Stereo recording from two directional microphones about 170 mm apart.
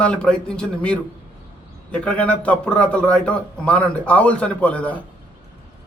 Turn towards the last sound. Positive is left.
turn(degrees=10)  # may be behind; listen again after turning